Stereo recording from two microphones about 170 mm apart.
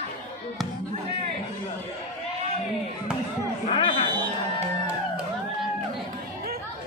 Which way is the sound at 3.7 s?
30° left (ahead or behind).